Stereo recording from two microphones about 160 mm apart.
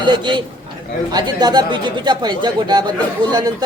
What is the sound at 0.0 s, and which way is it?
Speech, 30° right (ahead or behind).